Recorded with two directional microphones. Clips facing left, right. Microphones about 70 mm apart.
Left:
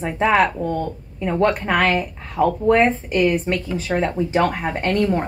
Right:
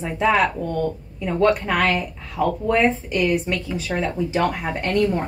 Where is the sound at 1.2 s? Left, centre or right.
Left.